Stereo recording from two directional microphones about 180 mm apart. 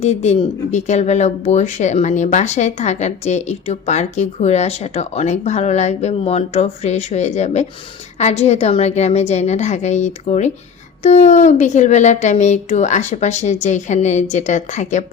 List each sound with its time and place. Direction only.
0.0 s speech: 35° left (ahead or behind)